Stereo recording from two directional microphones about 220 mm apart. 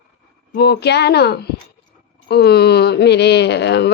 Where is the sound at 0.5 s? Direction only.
50° left (ahead or behind).